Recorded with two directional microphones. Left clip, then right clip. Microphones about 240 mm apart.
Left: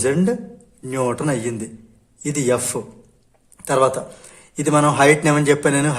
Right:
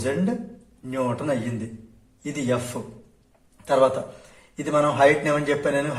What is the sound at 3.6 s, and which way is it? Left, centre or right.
A man's voice, left.